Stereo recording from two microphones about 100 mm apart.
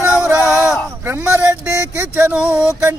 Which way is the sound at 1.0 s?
25° right (ahead or behind).